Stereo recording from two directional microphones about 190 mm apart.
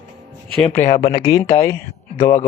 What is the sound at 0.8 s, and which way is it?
Mantra, 50° left (ahead or behind).